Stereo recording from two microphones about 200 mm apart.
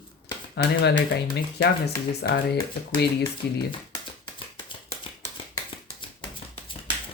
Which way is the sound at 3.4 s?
55° left (ahead or behind).